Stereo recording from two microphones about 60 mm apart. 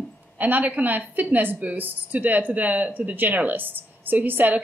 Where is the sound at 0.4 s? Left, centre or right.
Right.